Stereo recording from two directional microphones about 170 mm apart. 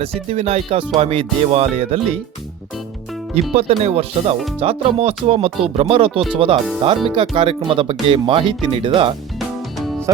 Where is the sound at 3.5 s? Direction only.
35° right (ahead or behind).